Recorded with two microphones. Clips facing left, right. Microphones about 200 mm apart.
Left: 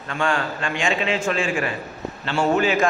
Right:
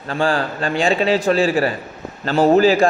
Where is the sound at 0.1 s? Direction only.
35° right (ahead or behind).